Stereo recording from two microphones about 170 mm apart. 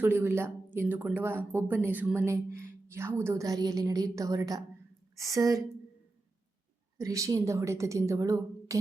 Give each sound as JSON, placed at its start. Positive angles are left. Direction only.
{"t": 0.0, "sound": "a woman's voice", "side_deg": -10}
{"t": 7.0, "sound": "speech", "side_deg": -20}